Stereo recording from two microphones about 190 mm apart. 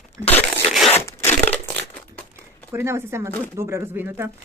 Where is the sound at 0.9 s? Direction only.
10° left (ahead or behind).